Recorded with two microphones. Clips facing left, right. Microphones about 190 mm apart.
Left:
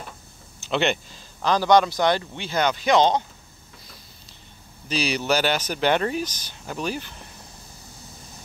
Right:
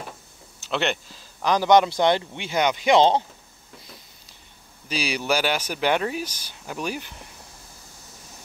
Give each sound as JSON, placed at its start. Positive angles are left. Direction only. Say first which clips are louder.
{"t": 0.6, "sound": "speech", "louder": "left 2 dB", "side_deg": 0}
{"t": 1.4, "sound": "speech", "louder": "even", "side_deg": -15}
{"t": 4.8, "sound": "speech", "louder": "left 2 dB", "side_deg": -10}